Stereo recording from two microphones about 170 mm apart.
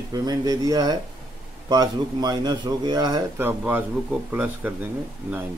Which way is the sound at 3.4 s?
10° right (ahead or behind).